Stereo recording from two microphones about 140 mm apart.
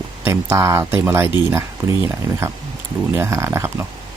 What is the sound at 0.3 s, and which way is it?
Speech, 20° right (ahead or behind).